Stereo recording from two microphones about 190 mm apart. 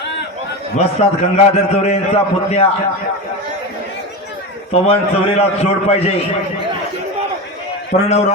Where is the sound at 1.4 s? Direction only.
35° left (ahead or behind).